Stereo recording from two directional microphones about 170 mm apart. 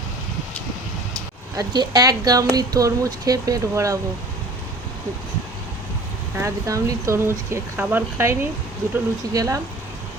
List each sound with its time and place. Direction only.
1.5 s speech: 25° right (ahead or behind)
6.3 s speech: 15° right (ahead or behind)